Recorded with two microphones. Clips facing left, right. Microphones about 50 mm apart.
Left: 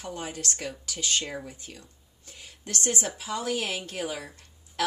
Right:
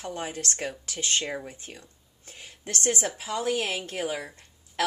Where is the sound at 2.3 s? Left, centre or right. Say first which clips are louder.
Right 1 dB; right.